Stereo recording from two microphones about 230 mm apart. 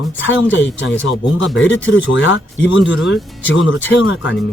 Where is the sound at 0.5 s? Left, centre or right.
Left.